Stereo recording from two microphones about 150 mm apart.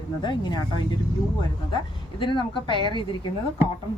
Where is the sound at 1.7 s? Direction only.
35° left (ahead or behind).